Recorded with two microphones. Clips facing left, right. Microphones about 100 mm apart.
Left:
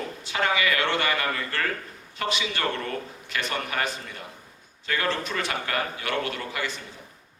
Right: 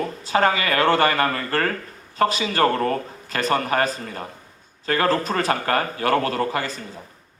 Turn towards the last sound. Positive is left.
turn(degrees=-40)  # may be behind; listen again after turning